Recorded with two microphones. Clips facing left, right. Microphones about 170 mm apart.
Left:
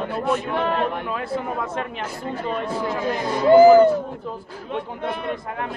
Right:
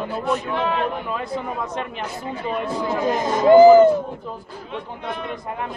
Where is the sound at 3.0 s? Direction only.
45° right (ahead or behind).